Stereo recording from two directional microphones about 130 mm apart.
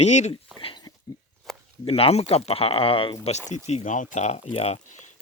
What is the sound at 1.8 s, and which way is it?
Speech, 50° left (ahead or behind).